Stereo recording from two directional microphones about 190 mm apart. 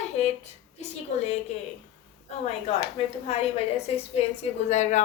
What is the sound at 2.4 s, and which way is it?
A woman's voice, 35° left (ahead or behind).